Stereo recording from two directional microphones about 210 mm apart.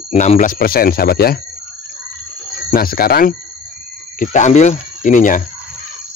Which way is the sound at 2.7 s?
45° left (ahead or behind).